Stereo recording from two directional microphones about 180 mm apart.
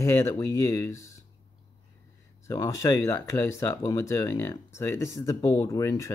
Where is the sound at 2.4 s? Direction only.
15° left (ahead or behind).